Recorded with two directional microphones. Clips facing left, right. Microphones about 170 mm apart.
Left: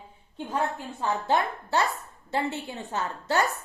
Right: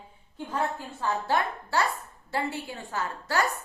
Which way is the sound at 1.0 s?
20° left (ahead or behind).